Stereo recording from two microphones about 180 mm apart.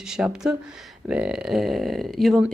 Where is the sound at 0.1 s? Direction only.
5° right (ahead or behind).